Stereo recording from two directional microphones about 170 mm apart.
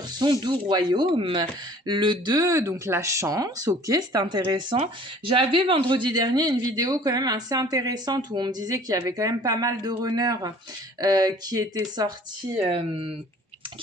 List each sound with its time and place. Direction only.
0.2 s speech: 25° right (ahead or behind)